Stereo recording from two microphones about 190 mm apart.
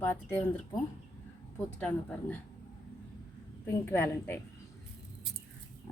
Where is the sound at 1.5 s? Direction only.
10° left (ahead or behind).